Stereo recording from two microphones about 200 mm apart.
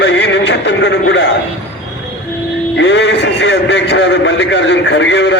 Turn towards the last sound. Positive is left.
turn(degrees=65)  # may be behind; listen again after turning